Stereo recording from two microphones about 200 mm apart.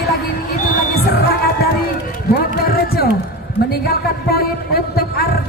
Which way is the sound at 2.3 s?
50° left (ahead or behind).